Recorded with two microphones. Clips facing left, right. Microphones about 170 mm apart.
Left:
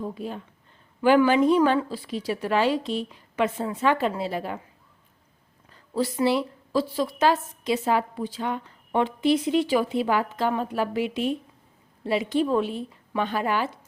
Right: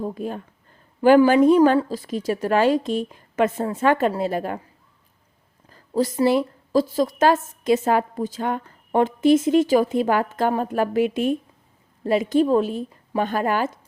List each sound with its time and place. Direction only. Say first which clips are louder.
0.0 s a woman's voice: right 4 dB; 50° right (ahead or behind)
5.7 s a woman's voice: right 4 dB; 40° right (ahead or behind)